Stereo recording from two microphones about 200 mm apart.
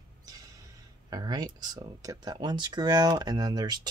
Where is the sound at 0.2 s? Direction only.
20° right (ahead or behind).